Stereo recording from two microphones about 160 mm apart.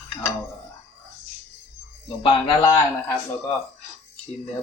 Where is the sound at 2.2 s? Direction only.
30° left (ahead or behind).